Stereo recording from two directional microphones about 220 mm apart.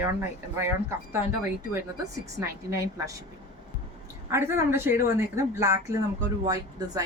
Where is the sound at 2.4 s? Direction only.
15° right (ahead or behind).